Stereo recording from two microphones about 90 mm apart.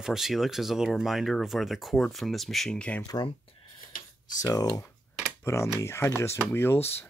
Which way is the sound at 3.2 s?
60° left (ahead or behind).